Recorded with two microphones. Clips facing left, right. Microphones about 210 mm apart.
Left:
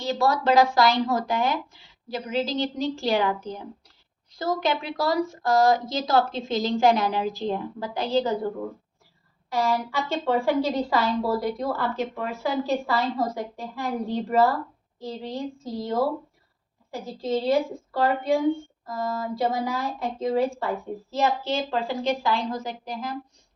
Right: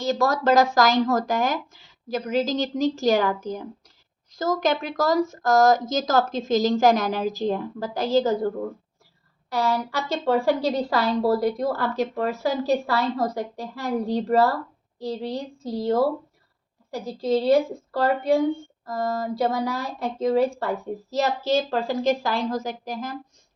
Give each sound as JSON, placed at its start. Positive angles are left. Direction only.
{"t": 0.0, "sound": "speech", "side_deg": -45}
{"t": 19.7, "sound": "speech", "side_deg": -40}